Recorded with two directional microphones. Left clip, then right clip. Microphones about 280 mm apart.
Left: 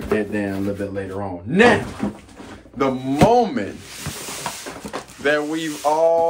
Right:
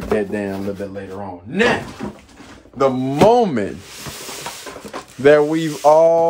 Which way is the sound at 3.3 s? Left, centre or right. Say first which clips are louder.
Right 3 dB; right.